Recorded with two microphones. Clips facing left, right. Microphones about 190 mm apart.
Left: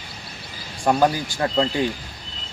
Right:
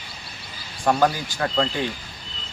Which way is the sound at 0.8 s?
15° left (ahead or behind).